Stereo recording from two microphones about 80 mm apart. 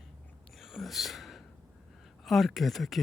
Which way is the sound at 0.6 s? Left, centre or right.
Centre.